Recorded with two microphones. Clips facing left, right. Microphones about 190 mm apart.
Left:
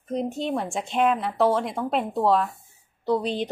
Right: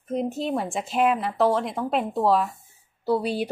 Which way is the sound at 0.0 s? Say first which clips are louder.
Right 1 dB; 5° right (ahead or behind).